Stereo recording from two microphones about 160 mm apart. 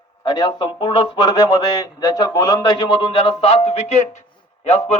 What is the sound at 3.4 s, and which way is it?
Speech, 40° left (ahead or behind).